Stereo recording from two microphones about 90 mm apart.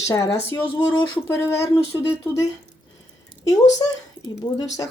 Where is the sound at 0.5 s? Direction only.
15° left (ahead or behind).